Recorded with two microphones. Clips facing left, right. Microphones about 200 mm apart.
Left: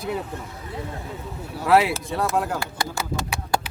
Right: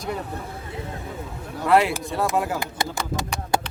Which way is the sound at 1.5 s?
5° left (ahead or behind).